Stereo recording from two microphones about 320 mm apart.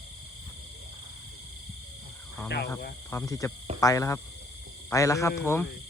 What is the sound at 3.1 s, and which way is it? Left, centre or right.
Cricket, centre.